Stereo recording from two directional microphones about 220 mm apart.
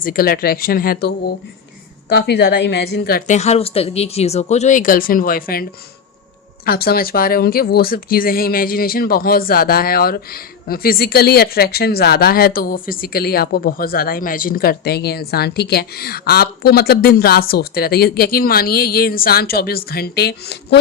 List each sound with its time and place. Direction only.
0.0 s speech: 40° left (ahead or behind)
2.1 s a woman's voice: 50° left (ahead or behind)
6.7 s speech: 45° left (ahead or behind)